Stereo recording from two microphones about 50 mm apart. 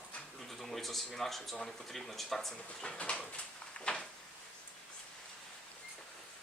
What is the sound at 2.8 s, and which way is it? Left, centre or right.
Speech, left.